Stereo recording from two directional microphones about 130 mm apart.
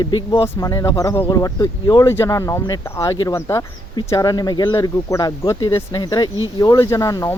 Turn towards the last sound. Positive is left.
turn(degrees=25)  # may be behind; listen again after turning